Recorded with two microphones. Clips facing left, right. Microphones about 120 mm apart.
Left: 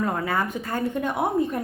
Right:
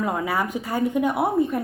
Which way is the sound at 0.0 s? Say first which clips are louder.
Right 1 dB; 10° right (ahead or behind).